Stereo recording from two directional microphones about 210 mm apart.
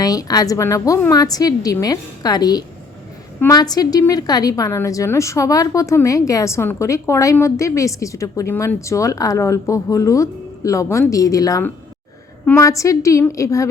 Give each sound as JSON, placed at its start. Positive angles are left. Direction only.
{"t": 0.0, "sound": "a woman's voice", "side_deg": 20}